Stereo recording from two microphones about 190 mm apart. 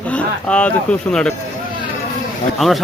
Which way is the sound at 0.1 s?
5° left (ahead or behind).